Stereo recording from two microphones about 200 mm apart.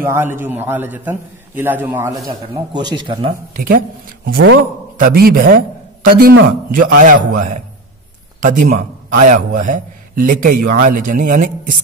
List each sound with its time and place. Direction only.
0.0 s a man's voice: 10° right (ahead or behind)
3.5 s a man's voice: 45° right (ahead or behind)
4.9 s a man's voice: 45° right (ahead or behind)